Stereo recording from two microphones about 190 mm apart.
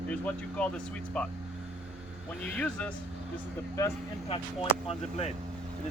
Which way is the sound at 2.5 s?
5° left (ahead or behind).